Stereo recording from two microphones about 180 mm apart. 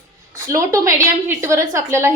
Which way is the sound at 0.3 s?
15° right (ahead or behind).